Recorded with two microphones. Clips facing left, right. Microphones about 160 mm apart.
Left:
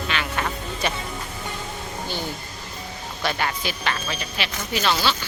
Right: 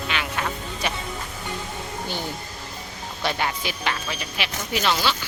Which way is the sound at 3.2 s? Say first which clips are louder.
Even; 20° right (ahead or behind).